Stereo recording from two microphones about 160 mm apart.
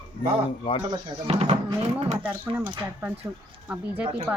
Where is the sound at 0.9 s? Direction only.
40° right (ahead or behind).